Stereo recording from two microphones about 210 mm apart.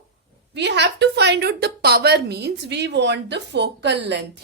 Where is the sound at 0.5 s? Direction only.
55° right (ahead or behind).